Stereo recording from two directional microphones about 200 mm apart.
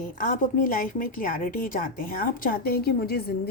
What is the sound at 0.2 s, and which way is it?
A woman's voice, 45° left (ahead or behind).